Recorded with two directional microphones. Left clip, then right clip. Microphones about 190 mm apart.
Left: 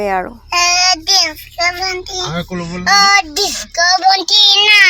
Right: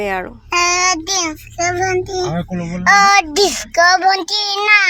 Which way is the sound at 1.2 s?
10° left (ahead or behind).